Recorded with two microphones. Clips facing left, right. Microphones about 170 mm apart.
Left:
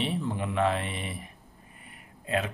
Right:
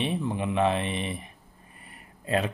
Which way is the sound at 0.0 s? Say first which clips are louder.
Right 2 dB; 20° right (ahead or behind).